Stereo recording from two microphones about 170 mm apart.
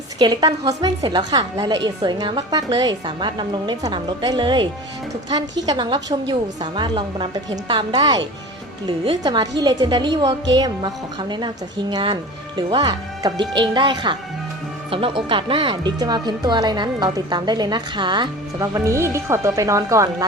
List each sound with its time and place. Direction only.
0.2 s speech: 25° right (ahead or behind)